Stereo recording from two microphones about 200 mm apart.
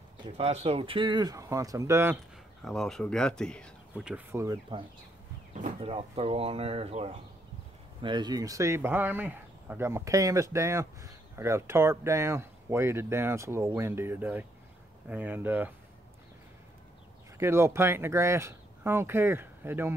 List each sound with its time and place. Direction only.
0.2 s speech: 30° right (ahead or behind); by 2.1 s 15° right (ahead or behind)
2.6 s speech: centre (ahead or behind)
5.6 s speech: 30° right (ahead or behind); by 15.7 s 10° right (ahead or behind)
17.4 s speech: 15° right (ahead or behind)